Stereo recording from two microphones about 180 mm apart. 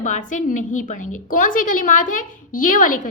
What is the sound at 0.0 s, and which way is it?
A woman's voice, 45° left (ahead or behind).